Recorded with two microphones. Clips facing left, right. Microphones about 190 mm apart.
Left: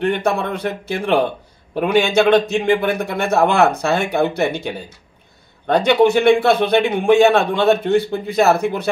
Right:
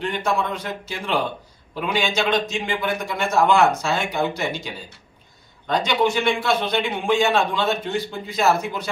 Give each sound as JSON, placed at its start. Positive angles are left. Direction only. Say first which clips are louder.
{"t": 0.0, "sound": "a man's voice", "louder": "left 5 dB", "side_deg": 60}